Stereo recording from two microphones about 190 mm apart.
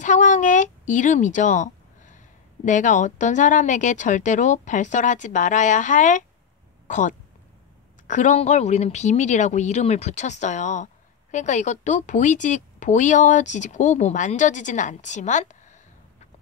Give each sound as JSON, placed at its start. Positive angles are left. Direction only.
{"t": 0.0, "sound": "a woman's voice", "side_deg": 40}